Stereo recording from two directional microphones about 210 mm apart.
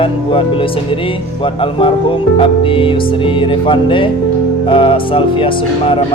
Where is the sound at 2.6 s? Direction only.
25° left (ahead or behind).